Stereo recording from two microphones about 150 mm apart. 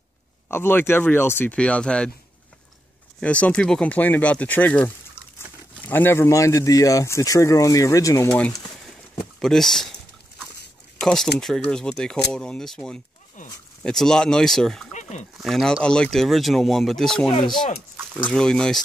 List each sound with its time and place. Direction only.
0.5 s speech: 15° left (ahead or behind)
3.2 s speech: 10° left (ahead or behind)
9.4 s speech: 5° left (ahead or behind)
11.0 s speech: 5° left (ahead or behind)
13.4 s a sound: 55° left (ahead or behind)
13.8 s speech: 5° left (ahead or behind)
14.9 s fowl: 50° left (ahead or behind)
15.3 s speech: centre (ahead or behind)